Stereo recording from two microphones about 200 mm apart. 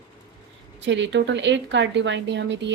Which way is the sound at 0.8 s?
65° right (ahead or behind).